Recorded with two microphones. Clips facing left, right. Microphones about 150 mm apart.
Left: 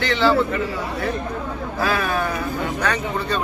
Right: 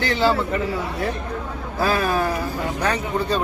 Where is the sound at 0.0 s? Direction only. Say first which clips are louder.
Left 1 dB; 40° right (ahead or behind).